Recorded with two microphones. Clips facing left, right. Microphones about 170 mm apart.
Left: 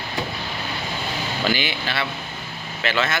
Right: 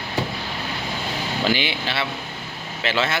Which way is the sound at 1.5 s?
25° right (ahead or behind).